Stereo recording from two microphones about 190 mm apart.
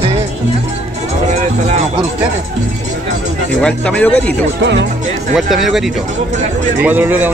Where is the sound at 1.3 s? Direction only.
35° right (ahead or behind).